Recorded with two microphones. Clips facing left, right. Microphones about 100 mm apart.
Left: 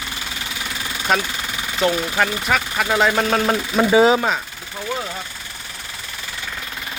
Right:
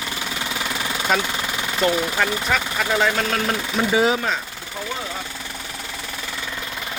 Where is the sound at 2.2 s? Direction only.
5° left (ahead or behind).